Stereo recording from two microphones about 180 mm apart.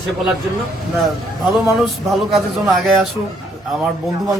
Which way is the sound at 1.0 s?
Centre (ahead or behind).